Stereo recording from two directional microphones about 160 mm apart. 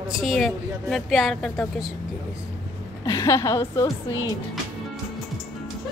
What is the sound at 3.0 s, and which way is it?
Speech, 20° left (ahead or behind).